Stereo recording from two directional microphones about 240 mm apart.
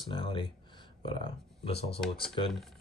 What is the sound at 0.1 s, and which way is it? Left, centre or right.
Speech, left.